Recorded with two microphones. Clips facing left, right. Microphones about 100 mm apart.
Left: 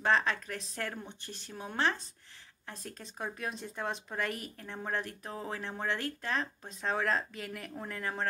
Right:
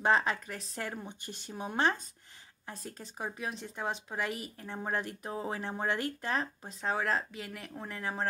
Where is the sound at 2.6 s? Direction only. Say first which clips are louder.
Right 1 dB; 5° right (ahead or behind).